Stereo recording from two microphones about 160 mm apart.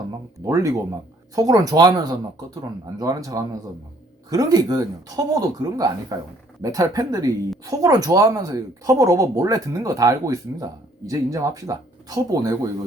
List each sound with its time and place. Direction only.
0.4 s speech: 20° right (ahead or behind)